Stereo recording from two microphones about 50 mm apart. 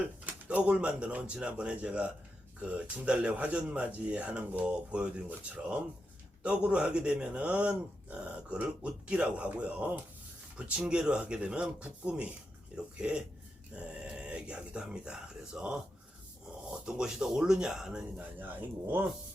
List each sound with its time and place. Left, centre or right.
0.0 s speech: right
16.8 s speech: centre
18.2 s speech: right